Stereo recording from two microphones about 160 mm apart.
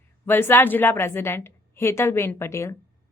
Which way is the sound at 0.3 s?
15° left (ahead or behind).